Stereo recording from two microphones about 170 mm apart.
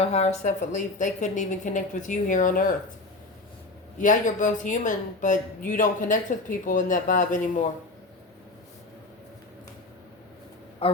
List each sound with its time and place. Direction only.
0.0 s speech: 40° left (ahead or behind)
3.9 s speech: 50° left (ahead or behind)
10.8 s a man's voice: 35° left (ahead or behind)